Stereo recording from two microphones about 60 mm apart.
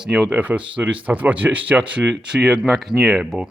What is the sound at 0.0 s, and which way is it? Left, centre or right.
Speech, centre.